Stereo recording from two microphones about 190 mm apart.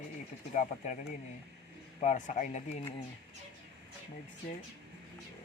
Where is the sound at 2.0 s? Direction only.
40° left (ahead or behind).